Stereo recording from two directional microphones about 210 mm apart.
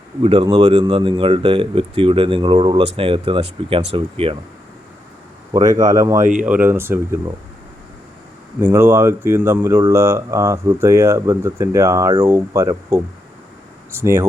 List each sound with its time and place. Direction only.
0.2 s speech: 25° right (ahead or behind)
5.5 s speech: 15° right (ahead or behind)
8.6 s speech: 10° right (ahead or behind)